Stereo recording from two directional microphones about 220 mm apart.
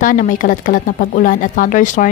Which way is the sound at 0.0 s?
35° left (ahead or behind).